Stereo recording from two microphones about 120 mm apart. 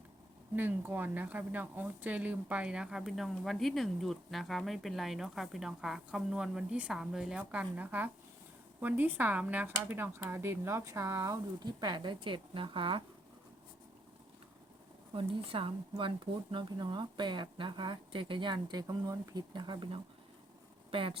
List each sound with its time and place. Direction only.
0.5 s speech: 15° right (ahead or behind); by 13.0 s 45° right (ahead or behind)
15.1 s speech: 50° right (ahead or behind)